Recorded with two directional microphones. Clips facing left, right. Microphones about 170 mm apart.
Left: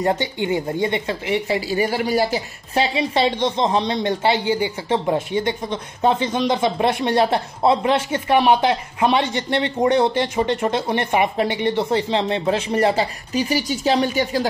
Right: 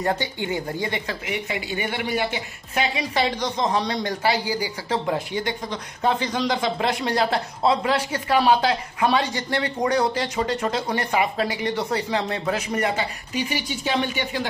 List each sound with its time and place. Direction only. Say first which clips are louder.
0.0 s speech: left 4 dB; 20° left (ahead or behind); by 14.5 s 40° left (ahead or behind)